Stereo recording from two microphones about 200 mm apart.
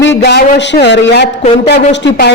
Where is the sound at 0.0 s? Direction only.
60° left (ahead or behind).